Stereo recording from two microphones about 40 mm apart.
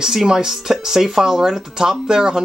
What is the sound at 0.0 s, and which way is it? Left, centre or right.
Speech, centre.